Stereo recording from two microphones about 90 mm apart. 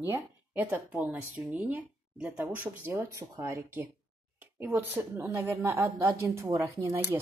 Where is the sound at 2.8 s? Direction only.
30° right (ahead or behind).